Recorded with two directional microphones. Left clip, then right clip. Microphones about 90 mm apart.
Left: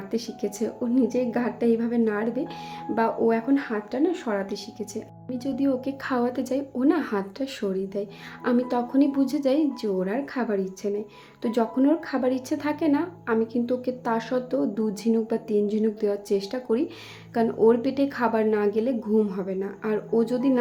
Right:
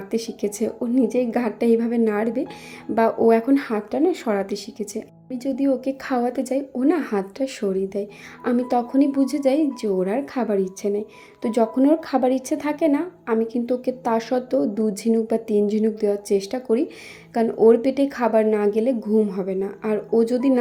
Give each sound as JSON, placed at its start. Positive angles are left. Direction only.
{"t": 0.1, "sound": "a woman's voice", "side_deg": -50}
{"t": 5.3, "sound": "a woman's voice", "side_deg": -30}
{"t": 18.9, "sound": "a woman's voice", "side_deg": -30}
{"t": 19.3, "sound": "a woman's voice", "side_deg": -45}